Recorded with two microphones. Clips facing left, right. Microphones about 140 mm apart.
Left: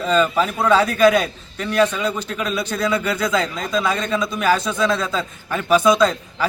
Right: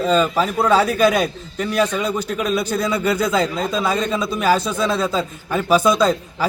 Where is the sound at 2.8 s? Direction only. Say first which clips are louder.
Left 3 dB; 35° right (ahead or behind).